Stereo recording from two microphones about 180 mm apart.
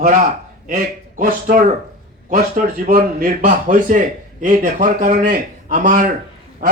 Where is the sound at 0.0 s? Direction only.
50° right (ahead or behind).